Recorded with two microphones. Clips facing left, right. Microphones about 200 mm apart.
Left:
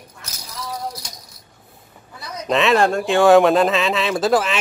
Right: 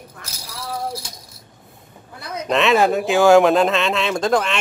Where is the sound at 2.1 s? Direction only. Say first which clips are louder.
Right 3 dB; 55° right (ahead or behind).